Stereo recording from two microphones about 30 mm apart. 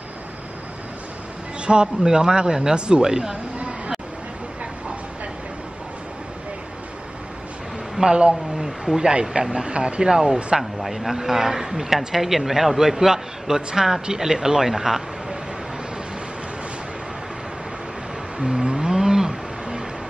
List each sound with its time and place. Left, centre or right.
1.7 s speech: right
3.5 s a sound: right
8.0 s speech: right
8.5 s a man's voice: centre
9.5 s speech: right
10.1 s speech: right
10.6 s speech: centre
11.1 s a man's voice: centre
13.6 s speech: right
14.0 s a man's voice: centre
18.4 s music: right